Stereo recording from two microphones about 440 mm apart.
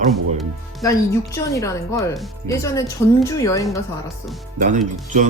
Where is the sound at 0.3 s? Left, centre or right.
Centre.